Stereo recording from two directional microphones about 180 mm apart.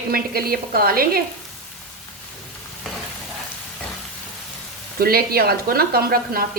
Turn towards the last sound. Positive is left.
turn(degrees=-55)  # may be behind; listen again after turning